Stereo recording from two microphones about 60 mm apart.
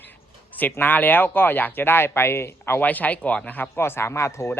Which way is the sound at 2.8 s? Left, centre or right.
Left.